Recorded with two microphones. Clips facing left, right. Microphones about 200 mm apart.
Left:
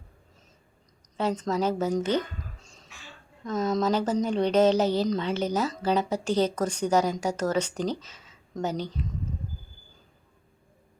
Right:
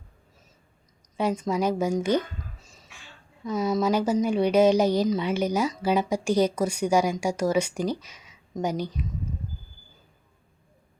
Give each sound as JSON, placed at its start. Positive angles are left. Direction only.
{"t": 1.1, "sound": "speech", "side_deg": -10}